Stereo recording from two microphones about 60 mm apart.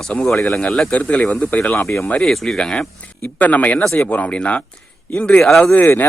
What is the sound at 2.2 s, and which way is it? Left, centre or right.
Speech, centre.